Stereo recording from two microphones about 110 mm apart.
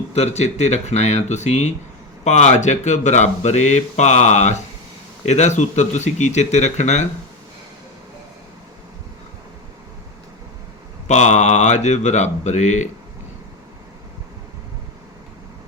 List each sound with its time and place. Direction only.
0.1 s speech: 80° left
11.1 s speech: 90° left